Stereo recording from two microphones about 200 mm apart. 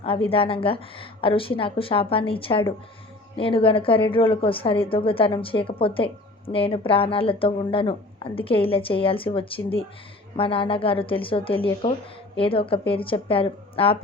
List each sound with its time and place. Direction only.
0.0 s a woman's voice: 25° left (ahead or behind)